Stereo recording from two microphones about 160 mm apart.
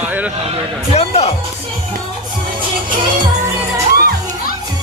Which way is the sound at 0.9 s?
40° left (ahead or behind).